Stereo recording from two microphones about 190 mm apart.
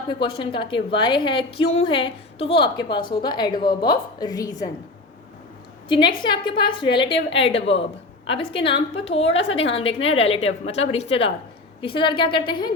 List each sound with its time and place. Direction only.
0.1 s a woman's voice: 25° left (ahead or behind)
5.9 s a woman's voice: 25° left (ahead or behind)